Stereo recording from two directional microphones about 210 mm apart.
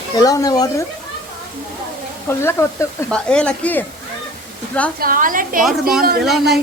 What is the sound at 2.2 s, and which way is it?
Speech, 10° left (ahead or behind).